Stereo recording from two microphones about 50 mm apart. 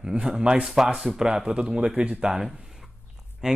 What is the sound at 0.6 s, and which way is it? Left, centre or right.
Speech, centre.